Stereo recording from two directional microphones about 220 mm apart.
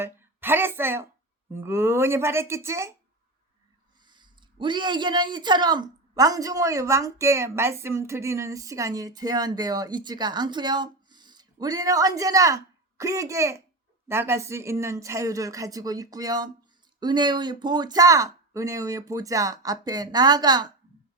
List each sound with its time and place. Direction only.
0.0 s a sound: 10° right (ahead or behind)
1.5 s a man's voice: 10° right (ahead or behind)
4.0 s a man's voice: 20° right (ahead or behind)